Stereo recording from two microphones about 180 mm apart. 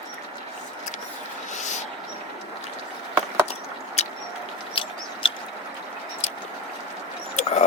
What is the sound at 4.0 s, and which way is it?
Vehicle, 35° left (ahead or behind).